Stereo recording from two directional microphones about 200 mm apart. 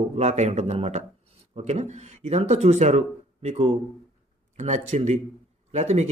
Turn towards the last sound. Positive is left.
turn(degrees=-35)  # may be behind; listen again after turning